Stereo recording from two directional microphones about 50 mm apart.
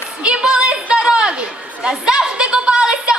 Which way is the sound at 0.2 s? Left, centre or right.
Centre.